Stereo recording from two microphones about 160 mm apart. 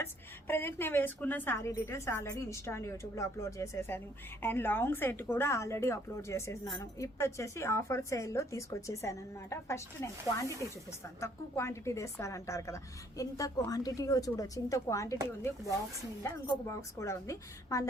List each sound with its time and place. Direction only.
0.0 s a woman's voice: 15° left (ahead or behind)